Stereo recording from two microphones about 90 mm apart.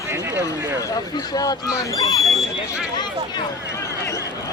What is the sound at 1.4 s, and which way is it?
Speech, 40° left (ahead or behind).